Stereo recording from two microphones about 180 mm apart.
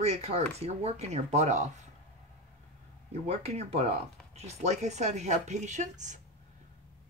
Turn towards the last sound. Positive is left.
turn(degrees=-40)  # may be behind; listen again after turning